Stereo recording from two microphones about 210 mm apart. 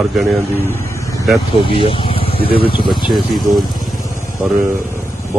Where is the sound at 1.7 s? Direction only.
25° left (ahead or behind).